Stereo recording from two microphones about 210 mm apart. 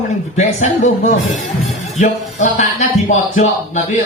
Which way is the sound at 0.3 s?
35° left (ahead or behind).